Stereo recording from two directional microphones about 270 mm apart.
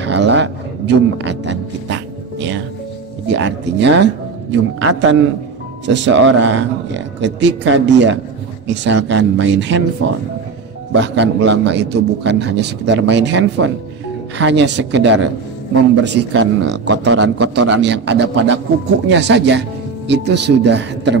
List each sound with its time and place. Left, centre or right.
0.0 s music: right
3.3 s speech: right
10.9 s a man's voice: right